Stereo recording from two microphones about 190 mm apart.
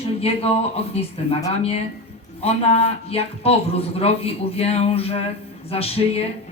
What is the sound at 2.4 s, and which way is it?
Speech, 30° left (ahead or behind).